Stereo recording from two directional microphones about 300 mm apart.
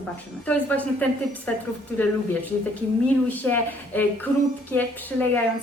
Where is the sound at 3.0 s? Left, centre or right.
Centre.